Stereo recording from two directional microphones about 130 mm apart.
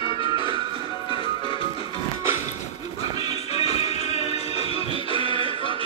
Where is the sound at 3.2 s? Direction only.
50° left (ahead or behind).